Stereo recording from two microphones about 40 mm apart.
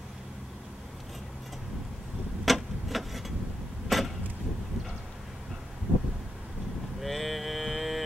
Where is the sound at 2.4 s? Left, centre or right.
Centre.